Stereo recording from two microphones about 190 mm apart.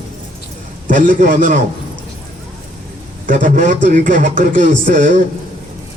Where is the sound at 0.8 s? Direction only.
45° right (ahead or behind).